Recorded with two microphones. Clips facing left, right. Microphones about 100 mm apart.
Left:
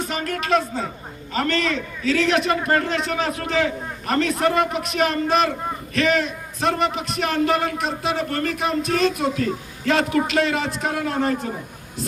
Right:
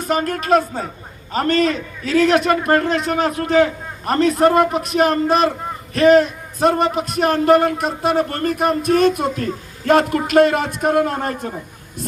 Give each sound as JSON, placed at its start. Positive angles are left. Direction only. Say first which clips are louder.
{"t": 0.0, "sound": "a man's voice", "louder": "right 6 dB", "side_deg": -45}